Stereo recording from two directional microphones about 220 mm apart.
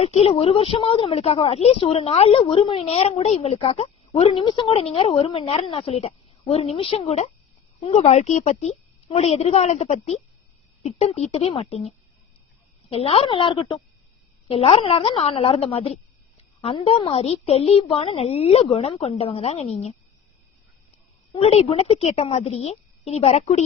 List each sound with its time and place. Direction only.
0.0 s a woman's voice: 30° left (ahead or behind)
12.9 s a woman's voice: 25° left (ahead or behind)
21.4 s a woman's voice: 25° left (ahead or behind)